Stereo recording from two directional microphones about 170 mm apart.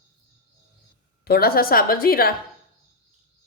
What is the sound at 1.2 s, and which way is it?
A woman's voice, 65° left (ahead or behind).